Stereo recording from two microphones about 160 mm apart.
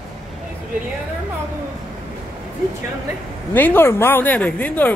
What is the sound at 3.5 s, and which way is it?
Speech, 10° left (ahead or behind).